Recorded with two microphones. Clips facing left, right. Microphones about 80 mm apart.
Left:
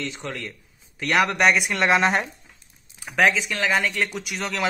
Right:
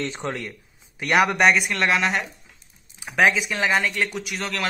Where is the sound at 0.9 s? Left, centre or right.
Centre.